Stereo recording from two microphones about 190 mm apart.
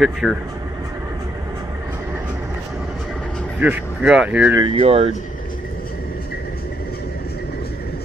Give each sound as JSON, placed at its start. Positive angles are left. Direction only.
{"t": 0.0, "sound": "speech", "side_deg": 0}
{"t": 3.5, "sound": "speech", "side_deg": -10}
{"t": 4.6, "sound": "speech", "side_deg": -30}